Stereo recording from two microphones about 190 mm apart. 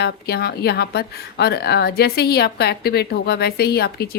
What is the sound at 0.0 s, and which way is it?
A woman's voice, 60° left (ahead or behind).